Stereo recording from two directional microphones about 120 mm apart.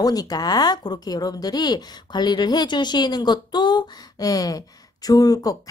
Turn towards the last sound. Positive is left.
turn(degrees=30)  # may be behind; listen again after turning